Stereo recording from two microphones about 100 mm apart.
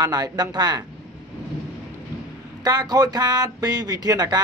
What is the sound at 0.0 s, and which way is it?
Speech, 40° right (ahead or behind).